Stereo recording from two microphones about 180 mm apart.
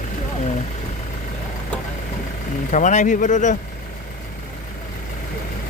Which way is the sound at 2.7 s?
45° left (ahead or behind).